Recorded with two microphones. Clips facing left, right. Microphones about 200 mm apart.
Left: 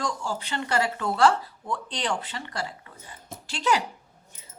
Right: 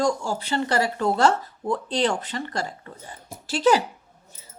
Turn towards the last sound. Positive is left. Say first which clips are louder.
# right 6 dB
turn(degrees=-35)  # may be behind; listen again after turning